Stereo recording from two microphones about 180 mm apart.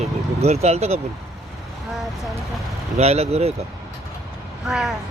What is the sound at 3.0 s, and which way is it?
Speech, 35° right (ahead or behind).